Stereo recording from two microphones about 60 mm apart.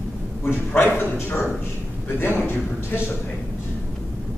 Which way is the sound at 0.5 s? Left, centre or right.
Left.